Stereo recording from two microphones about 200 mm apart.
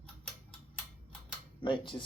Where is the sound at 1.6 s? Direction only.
25° left (ahead or behind).